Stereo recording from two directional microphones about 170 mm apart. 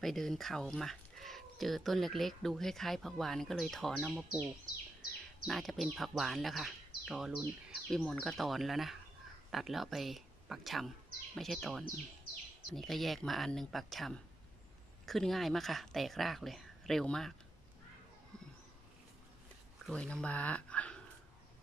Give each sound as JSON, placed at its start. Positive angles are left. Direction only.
{"t": 0.0, "sound": "speech", "side_deg": 0}
{"t": 5.5, "sound": "speech", "side_deg": 0}
{"t": 19.9, "sound": "speech", "side_deg": 5}